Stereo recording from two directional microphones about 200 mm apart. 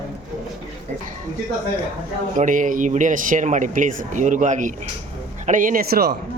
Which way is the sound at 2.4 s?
40° right (ahead or behind).